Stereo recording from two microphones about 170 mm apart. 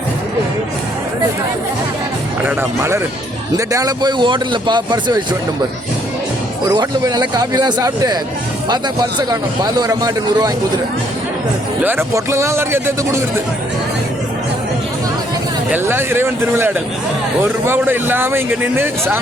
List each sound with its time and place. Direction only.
2.4 s speech: 15° right (ahead or behind)
6.7 s speech: 25° right (ahead or behind)
11.8 s speech: 15° right (ahead or behind)
15.7 s speech: 15° right (ahead or behind)